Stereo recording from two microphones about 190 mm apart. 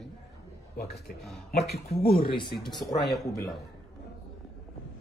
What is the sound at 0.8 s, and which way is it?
A man's voice, 55° left (ahead or behind).